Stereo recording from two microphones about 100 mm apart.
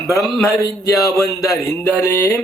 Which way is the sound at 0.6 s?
35° left (ahead or behind).